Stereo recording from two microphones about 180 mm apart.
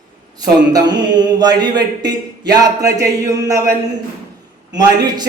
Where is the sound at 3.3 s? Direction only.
20° right (ahead or behind).